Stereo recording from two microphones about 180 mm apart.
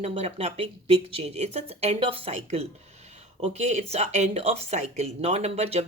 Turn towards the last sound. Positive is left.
turn(degrees=-35)  # may be behind; listen again after turning